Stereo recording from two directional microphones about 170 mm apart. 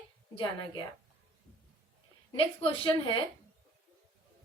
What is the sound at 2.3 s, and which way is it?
Speech, 30° left (ahead or behind).